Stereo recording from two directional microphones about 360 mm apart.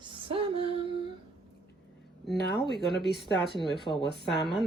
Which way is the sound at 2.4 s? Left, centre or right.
Left.